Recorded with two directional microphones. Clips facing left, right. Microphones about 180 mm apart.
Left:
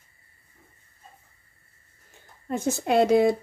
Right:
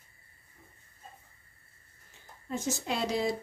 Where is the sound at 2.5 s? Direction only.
60° left (ahead or behind).